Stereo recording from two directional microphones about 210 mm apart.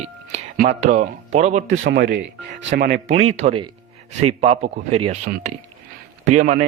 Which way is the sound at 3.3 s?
30° right (ahead or behind).